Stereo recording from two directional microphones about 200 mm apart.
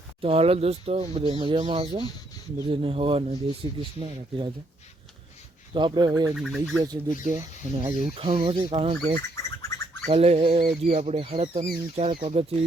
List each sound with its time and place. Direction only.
0.2 s speech: 30° right (ahead or behind)
5.7 s speech: 25° right (ahead or behind)
6.3 s speech: centre (ahead or behind)
6.8 s speech: 20° right (ahead or behind)
9.3 s bird: 15° left (ahead or behind)
10.1 s speech: 30° right (ahead or behind)